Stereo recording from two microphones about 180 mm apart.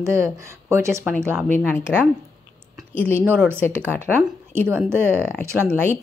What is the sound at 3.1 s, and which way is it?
Speech, 10° right (ahead or behind).